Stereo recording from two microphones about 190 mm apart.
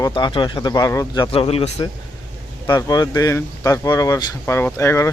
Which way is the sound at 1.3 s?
30° left (ahead or behind).